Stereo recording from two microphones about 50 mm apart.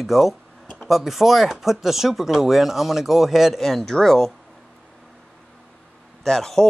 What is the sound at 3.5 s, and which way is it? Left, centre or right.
Speech, centre.